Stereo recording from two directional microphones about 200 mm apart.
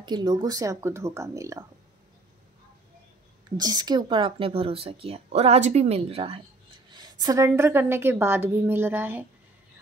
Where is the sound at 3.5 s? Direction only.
20° right (ahead or behind).